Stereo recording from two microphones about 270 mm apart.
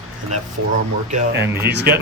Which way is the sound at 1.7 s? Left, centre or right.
Right.